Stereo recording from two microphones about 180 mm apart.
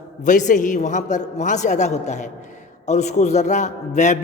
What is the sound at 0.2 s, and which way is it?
A man's voice, 45° left (ahead or behind).